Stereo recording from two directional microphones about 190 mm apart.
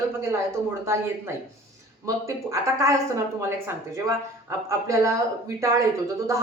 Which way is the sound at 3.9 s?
15° right (ahead or behind).